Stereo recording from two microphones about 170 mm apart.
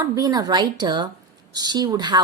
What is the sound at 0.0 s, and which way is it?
A woman's voice, 20° right (ahead or behind).